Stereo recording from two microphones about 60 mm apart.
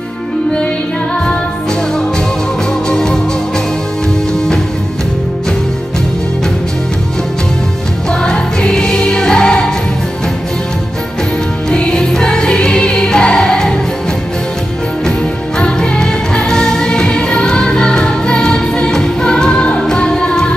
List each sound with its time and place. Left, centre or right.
2.9 s music: centre
8.1 s music: centre
11.7 s music: centre
15.6 s music: centre